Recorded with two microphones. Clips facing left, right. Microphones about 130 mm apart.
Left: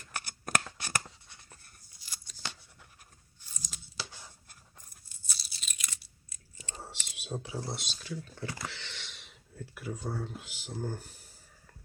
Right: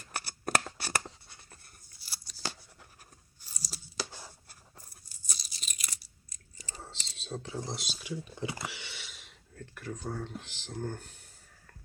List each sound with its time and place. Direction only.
0.1 s shuffling cards: 30° right (ahead or behind)
2.0 s scissors: 35° right (ahead or behind)
3.4 s a sound: 35° right (ahead or behind)
5.3 s tearing: 40° right (ahead or behind)
6.8 s speech: 10° left (ahead or behind)